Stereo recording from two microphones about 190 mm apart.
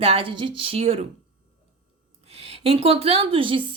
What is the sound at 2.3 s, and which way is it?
Speech, 30° right (ahead or behind).